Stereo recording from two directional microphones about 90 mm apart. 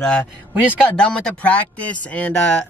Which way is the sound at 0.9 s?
10° left (ahead or behind).